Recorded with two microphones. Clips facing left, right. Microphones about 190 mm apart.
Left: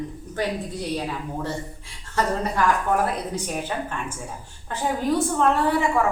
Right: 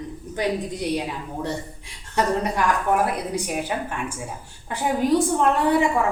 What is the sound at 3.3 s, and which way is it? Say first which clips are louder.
Speech: right 2 dB; 10° right (ahead or behind).